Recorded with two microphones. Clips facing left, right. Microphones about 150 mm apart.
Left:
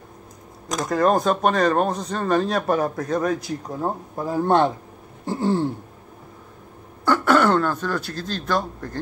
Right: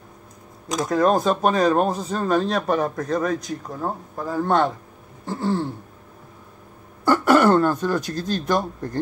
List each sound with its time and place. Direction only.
0.7 s speech: centre (ahead or behind); by 4.7 s 15° left (ahead or behind)
5.2 s throat clearing: 15° left (ahead or behind)
7.1 s speech: 10° right (ahead or behind)